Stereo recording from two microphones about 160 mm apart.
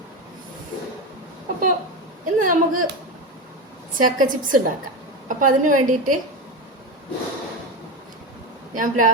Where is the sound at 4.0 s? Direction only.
55° right (ahead or behind).